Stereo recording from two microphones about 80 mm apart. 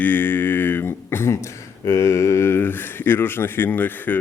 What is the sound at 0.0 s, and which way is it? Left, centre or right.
Speech, left.